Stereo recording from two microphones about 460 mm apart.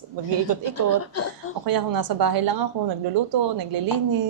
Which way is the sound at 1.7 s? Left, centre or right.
Right.